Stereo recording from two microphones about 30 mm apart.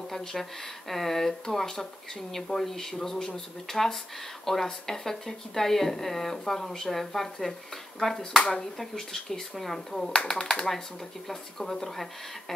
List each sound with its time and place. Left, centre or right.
0.2 s speech: centre
11.2 s speech: centre